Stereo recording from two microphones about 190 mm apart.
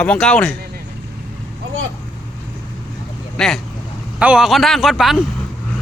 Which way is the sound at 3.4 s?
5° left (ahead or behind).